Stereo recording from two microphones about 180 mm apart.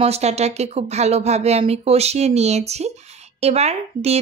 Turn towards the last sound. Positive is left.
turn(degrees=-35)  # may be behind; listen again after turning